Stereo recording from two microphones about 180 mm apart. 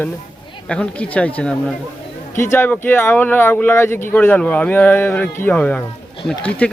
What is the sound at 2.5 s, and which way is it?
Speech, 10° left (ahead or behind).